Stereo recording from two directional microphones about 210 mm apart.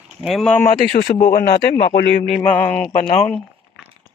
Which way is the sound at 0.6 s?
40° left (ahead or behind).